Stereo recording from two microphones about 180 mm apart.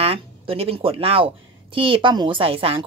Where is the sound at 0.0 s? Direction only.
30° right (ahead or behind).